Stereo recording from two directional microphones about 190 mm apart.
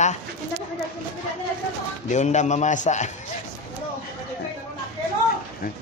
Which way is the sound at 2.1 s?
40° left (ahead or behind).